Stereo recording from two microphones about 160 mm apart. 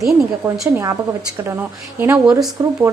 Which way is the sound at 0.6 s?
20° right (ahead or behind).